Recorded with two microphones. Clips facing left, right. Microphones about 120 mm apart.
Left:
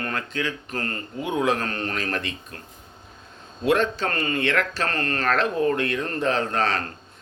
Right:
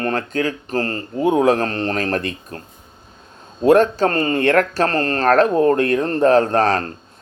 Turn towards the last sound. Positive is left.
turn(degrees=-40)  # may be behind; listen again after turning